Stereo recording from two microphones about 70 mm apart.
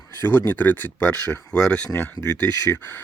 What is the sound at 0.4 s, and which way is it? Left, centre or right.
Speech, left.